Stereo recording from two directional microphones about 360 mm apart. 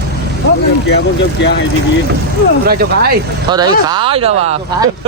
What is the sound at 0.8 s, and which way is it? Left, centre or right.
Speech, left.